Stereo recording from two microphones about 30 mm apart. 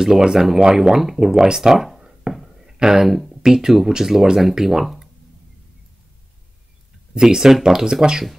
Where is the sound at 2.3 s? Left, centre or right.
Right.